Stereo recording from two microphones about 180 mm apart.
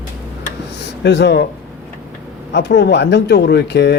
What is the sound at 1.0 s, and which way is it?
Speech, 70° left (ahead or behind).